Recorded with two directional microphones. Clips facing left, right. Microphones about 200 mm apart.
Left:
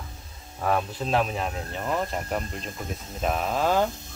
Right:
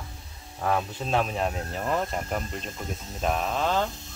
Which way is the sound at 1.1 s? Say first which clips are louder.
Even; centre (ahead or behind).